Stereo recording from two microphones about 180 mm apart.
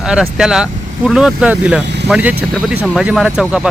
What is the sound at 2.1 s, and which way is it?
Speech, 10° right (ahead or behind).